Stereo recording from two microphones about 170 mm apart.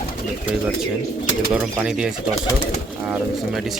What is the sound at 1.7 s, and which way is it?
Speech, 5° right (ahead or behind).